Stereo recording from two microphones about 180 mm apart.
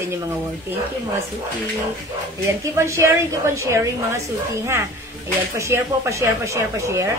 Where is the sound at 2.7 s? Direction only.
15° right (ahead or behind).